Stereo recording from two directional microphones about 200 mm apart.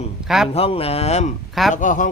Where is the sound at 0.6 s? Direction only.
30° left (ahead or behind).